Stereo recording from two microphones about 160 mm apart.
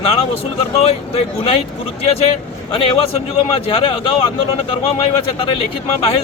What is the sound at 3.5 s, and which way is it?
Speech, 35° left (ahead or behind).